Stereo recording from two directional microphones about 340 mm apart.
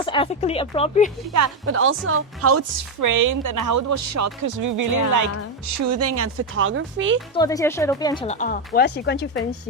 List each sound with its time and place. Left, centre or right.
0.0 s speech: centre
1.6 s speech: right
3.0 s speech: right
7.3 s speech: centre; by 9.4 s left